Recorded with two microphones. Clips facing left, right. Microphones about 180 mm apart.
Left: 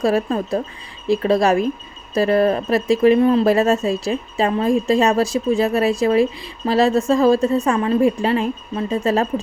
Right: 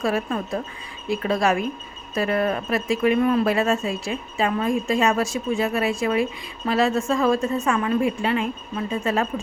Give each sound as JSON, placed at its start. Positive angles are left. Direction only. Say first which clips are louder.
{"t": 0.0, "sound": "speech", "louder": "left 6 dB", "side_deg": 35}